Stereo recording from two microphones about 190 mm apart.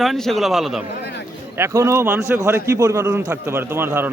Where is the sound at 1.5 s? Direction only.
15° right (ahead or behind).